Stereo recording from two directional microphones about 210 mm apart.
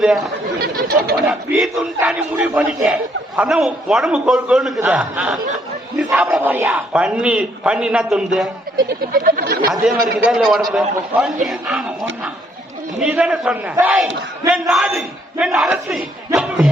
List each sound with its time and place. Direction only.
0.0 s speech: centre (ahead or behind)
0.6 s speech: 45° right (ahead or behind)
1.3 s a man's voice: centre (ahead or behind)
8.9 s speech: 45° right (ahead or behind)
10.2 s a man's voice: centre (ahead or behind)
13.0 s a man's voice: 5° right (ahead or behind)